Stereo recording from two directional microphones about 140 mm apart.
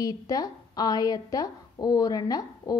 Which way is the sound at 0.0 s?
25° left (ahead or behind).